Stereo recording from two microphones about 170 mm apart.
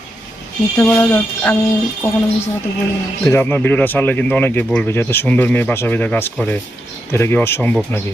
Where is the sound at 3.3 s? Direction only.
10° left (ahead or behind).